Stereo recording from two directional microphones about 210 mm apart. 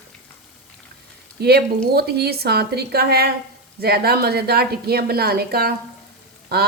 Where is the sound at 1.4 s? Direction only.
50° right (ahead or behind).